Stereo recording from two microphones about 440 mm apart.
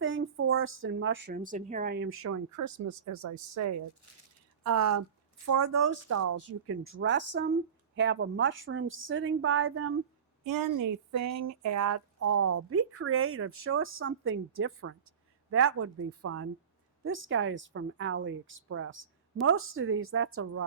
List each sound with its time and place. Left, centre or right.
0.0 s a woman's voice: right
10.4 s a woman's voice: right